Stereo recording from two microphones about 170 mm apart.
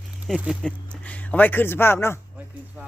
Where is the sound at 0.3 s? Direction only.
5° right (ahead or behind).